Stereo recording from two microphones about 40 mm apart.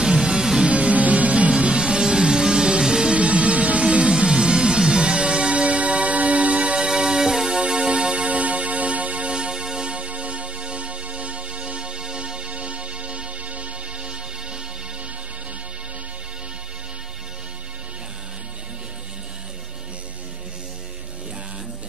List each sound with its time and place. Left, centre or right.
0.0 s music: centre
0.7 s music: right
1.5 s music: right
3.2 s music: right
4.1 s music: right
9.9 s music: right